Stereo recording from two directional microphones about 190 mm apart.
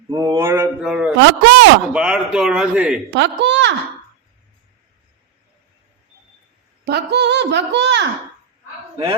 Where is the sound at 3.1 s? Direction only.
65° right (ahead or behind).